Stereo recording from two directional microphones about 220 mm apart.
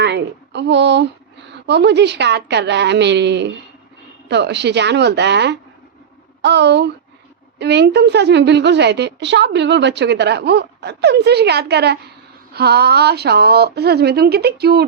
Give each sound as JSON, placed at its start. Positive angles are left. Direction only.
{"t": 0.0, "sound": "a woman's voice", "side_deg": -50}